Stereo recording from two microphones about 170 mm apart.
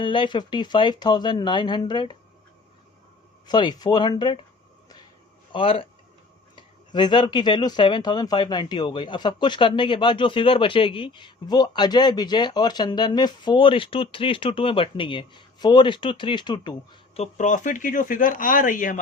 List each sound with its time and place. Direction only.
0.0 s speech: 30° left (ahead or behind)
3.4 s speech: 25° left (ahead or behind)
5.5 s speech: 30° left (ahead or behind)
17.2 s speech: 45° left (ahead or behind)